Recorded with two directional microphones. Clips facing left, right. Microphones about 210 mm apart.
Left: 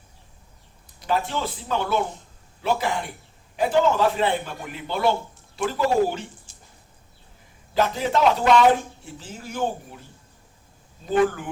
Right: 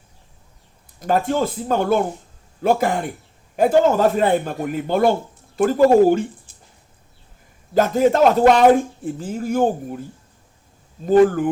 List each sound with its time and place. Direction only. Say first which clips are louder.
0.9 s speech: right 7 dB; 45° right (ahead or behind)
7.7 s speech: right 7 dB; 45° right (ahead or behind)
11.0 s speech: right 8 dB; 45° right (ahead or behind)